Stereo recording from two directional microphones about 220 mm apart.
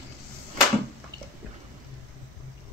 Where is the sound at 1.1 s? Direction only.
15° right (ahead or behind).